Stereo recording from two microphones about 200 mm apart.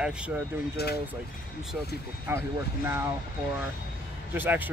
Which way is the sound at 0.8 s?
50° left (ahead or behind).